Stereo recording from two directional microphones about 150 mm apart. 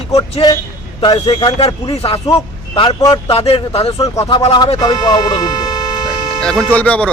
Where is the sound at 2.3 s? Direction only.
30° left (ahead or behind).